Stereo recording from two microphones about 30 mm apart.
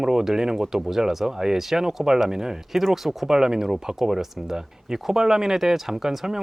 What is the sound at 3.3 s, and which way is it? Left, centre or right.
Speech, right.